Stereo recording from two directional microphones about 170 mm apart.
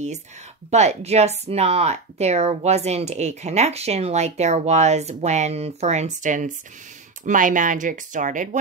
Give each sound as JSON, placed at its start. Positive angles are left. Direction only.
{"t": 0.7, "sound": "speech", "side_deg": -40}